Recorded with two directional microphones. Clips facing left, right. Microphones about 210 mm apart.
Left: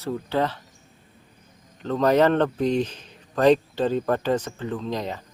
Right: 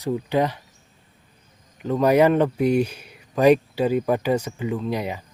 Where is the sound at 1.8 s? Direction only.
10° right (ahead or behind).